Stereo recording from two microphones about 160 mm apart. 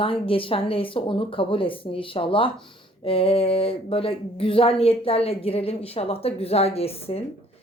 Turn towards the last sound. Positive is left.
turn(degrees=40)  # may be behind; listen again after turning